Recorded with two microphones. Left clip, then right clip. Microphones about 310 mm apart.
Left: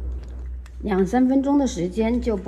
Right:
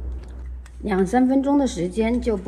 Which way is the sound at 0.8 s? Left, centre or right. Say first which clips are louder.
Right 1 dB; left.